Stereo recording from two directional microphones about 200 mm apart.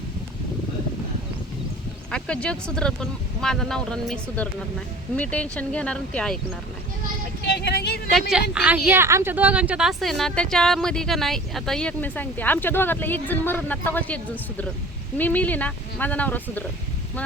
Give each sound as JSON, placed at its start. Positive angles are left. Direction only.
{"t": 2.0, "sound": "speech", "side_deg": 5}
{"t": 7.4, "sound": "speech", "side_deg": 55}
{"t": 8.1, "sound": "speech", "side_deg": 0}
{"t": 15.2, "sound": "speech", "side_deg": 10}